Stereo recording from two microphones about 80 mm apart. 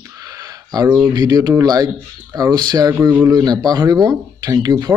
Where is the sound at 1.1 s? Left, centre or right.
Right.